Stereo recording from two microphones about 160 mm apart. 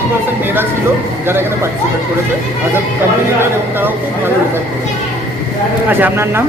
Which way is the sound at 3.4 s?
15° right (ahead or behind).